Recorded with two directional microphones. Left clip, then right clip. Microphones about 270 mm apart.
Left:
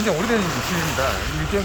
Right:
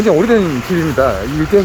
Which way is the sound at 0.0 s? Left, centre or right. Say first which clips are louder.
Right 10 dB; right.